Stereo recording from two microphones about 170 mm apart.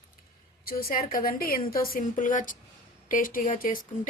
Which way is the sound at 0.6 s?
60° left (ahead or behind).